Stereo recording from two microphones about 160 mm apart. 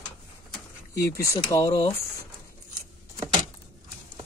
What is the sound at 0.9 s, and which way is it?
Speech, 20° left (ahead or behind).